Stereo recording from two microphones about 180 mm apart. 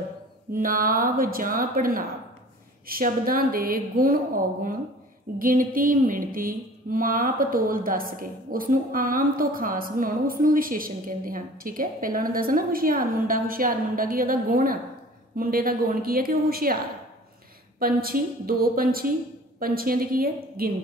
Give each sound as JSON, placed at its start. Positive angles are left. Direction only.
{"t": 0.6, "sound": "mantra", "side_deg": -50}
{"t": 5.4, "sound": "mantra", "side_deg": -50}
{"t": 15.3, "sound": "a woman's voice", "side_deg": -50}
{"t": 17.7, "sound": "a woman's voice", "side_deg": -55}